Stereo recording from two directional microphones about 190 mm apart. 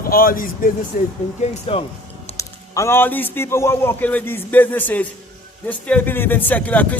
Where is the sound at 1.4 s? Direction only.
30° left (ahead or behind).